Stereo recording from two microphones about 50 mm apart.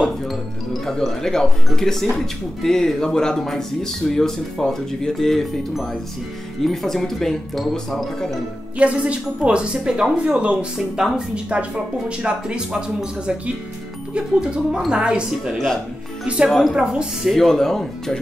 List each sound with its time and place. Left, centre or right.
0.8 s speech: centre
6.6 s speech: centre
8.7 s a woman's voice: right
11.0 s speech: centre
11.5 s a woman's voice: right
15.5 s speech: centre
16.7 s speech: centre
17.3 s speech: centre